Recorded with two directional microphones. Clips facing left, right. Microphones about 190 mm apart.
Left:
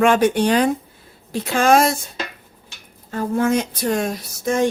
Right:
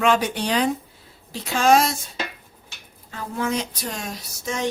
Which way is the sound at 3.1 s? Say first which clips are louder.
Left 7 dB; 45° left (ahead or behind).